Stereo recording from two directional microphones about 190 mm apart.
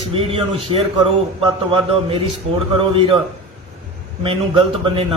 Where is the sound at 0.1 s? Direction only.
30° right (ahead or behind).